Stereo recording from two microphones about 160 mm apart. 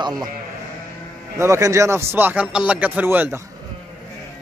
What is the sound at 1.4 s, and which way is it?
Speech, 20° right (ahead or behind).